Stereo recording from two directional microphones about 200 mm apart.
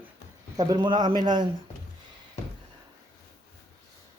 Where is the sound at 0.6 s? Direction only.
20° right (ahead or behind).